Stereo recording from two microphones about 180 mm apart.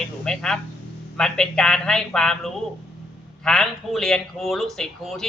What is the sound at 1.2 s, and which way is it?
Speech, 5° left (ahead or behind).